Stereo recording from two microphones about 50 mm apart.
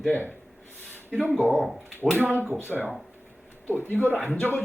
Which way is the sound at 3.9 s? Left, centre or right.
Left.